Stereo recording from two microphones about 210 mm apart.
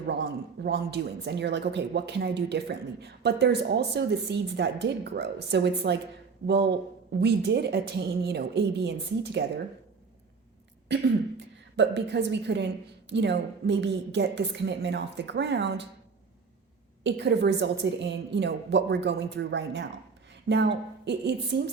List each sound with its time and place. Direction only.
0.6 s speech: 55° right (ahead or behind)
10.9 s a woman's voice: 55° right (ahead or behind)
17.0 s a woman's voice: 55° right (ahead or behind)